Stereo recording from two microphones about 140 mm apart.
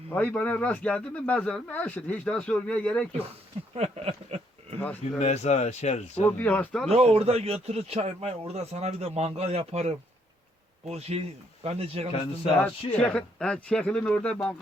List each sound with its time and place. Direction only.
0.1 s speech: 10° left (ahead or behind)
3.8 s a sound: 45° right (ahead or behind)
4.8 s speech: 10° left (ahead or behind)
5.2 s speech: 50° left (ahead or behind)
6.2 s speech: 10° left (ahead or behind)
6.9 s speech: 45° right (ahead or behind)
13.0 s speech: 10° left (ahead or behind)